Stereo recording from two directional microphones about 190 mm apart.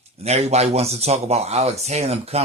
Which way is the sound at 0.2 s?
35° right (ahead or behind).